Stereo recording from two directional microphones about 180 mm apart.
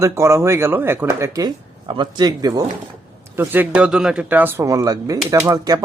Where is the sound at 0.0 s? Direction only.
15° right (ahead or behind).